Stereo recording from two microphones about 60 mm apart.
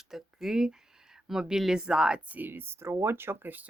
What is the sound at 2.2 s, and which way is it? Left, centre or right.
Speech, right.